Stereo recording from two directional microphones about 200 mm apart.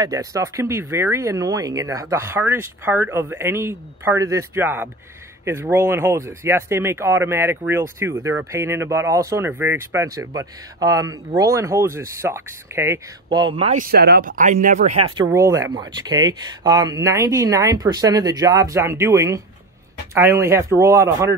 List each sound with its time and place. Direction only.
0.0 s speech: 15° right (ahead or behind)
13.7 s speech: 45° right (ahead or behind); by 15.2 s 30° right (ahead or behind)
15.3 s speech: 15° right (ahead or behind)